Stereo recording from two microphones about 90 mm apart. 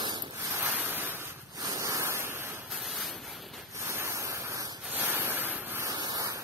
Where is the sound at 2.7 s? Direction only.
5° right (ahead or behind).